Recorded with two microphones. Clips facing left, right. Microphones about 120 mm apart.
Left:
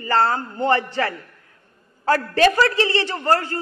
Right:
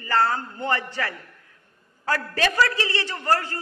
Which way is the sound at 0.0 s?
25° left (ahead or behind).